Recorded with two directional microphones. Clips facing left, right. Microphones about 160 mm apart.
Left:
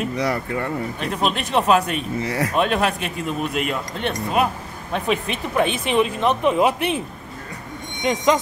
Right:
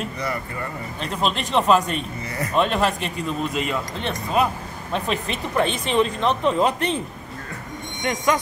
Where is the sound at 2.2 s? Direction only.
90° left.